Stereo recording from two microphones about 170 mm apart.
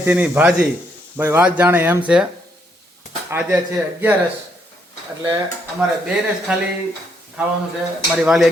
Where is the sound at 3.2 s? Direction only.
10° right (ahead or behind).